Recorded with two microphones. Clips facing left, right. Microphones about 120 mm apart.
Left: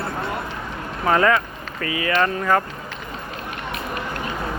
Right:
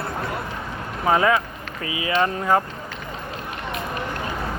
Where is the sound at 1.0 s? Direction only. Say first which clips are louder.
Left 1 dB; 15° right (ahead or behind).